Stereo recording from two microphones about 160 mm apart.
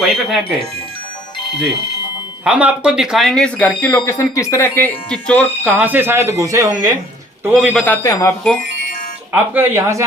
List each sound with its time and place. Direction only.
0.0 s a man's voice: centre (ahead or behind)
2.4 s speech: 10° right (ahead or behind)
5.7 s speech: 15° right (ahead or behind)
7.4 s a man's voice: 5° right (ahead or behind)
7.9 s speech: 20° left (ahead or behind)
9.3 s speech: 10° right (ahead or behind)